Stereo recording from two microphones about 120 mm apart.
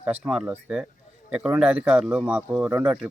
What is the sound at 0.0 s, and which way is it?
Speech, 5° right (ahead or behind).